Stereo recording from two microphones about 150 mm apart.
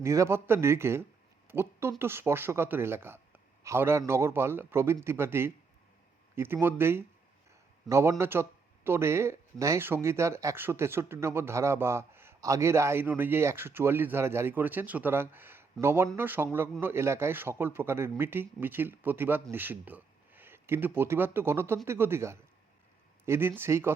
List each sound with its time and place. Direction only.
0.0 s a man's voice: 20° right (ahead or behind)